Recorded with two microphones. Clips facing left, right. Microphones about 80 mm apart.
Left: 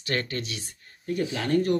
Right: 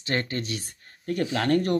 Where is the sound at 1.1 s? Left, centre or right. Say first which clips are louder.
Right 2 dB; right.